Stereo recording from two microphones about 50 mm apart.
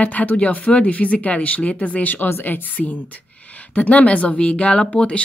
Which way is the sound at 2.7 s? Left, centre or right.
Left.